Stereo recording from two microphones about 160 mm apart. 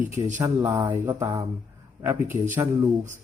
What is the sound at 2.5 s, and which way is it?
Music, 20° right (ahead or behind).